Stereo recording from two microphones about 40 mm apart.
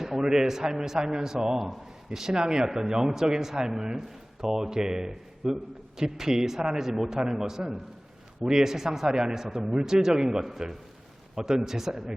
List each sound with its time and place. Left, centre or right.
0.0 s a man's voice: centre